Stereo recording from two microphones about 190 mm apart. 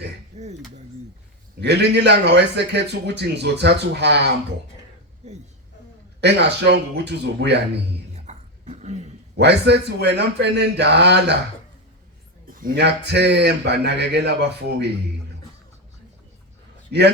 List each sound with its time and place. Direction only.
0.3 s speech: 35° right (ahead or behind)
1.6 s a man's voice: 60° right (ahead or behind)
5.2 s speech: 35° right (ahead or behind)
6.1 s a man's voice: 60° right (ahead or behind)
8.1 s a sound: 35° right (ahead or behind)
9.3 s a man's voice: 60° right (ahead or behind)
12.5 s a man's voice: 50° right (ahead or behind)
16.9 s a man's voice: 60° right (ahead or behind)